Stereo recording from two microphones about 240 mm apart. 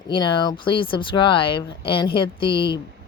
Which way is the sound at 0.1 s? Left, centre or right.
Centre.